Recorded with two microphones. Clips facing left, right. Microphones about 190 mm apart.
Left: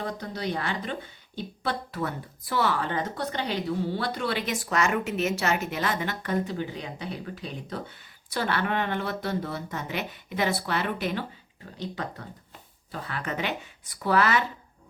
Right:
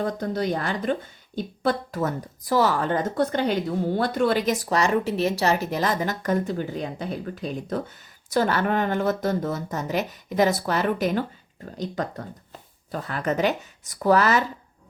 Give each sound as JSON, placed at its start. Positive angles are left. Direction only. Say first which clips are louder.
{"t": 0.0, "sound": "speech", "louder": "right 6 dB", "side_deg": -45}